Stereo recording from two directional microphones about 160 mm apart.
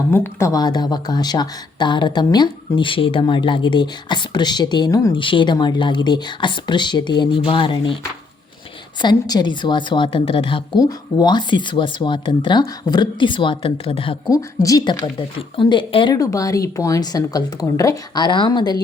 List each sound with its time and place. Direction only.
0.1 s speech: 15° left (ahead or behind)
5.2 s speech: 30° left (ahead or behind)
9.0 s speech: 25° left (ahead or behind)
14.3 s speech: 20° left (ahead or behind)
16.1 s speech: 20° left (ahead or behind)